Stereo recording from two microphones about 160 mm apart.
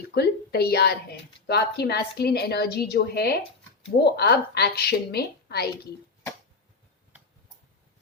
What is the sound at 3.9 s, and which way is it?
A woman's voice, 90° left.